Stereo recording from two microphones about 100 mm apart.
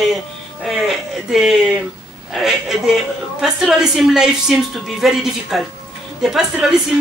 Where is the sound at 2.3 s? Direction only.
5° right (ahead or behind).